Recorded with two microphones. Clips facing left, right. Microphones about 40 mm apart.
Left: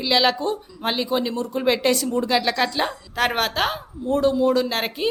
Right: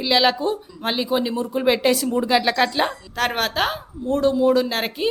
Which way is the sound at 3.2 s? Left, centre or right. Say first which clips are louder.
Even; centre.